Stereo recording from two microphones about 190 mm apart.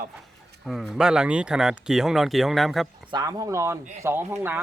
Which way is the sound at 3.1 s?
20° right (ahead or behind).